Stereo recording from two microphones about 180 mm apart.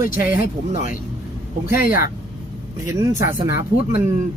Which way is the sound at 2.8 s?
20° right (ahead or behind).